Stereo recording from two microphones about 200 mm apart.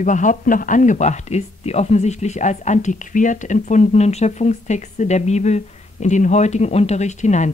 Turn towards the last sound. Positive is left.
turn(degrees=35)  # may be behind; listen again after turning